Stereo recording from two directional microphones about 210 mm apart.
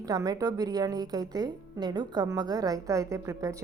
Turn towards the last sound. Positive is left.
turn(degrees=-15)  # may be behind; listen again after turning